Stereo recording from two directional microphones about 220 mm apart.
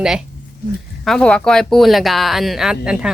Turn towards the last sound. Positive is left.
turn(degrees=-5)  # may be behind; listen again after turning